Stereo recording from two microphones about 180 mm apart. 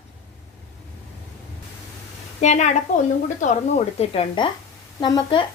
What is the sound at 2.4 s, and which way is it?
Speech, 40° left (ahead or behind).